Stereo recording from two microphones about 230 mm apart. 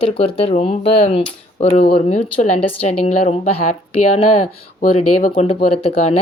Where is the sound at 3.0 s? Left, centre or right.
Left.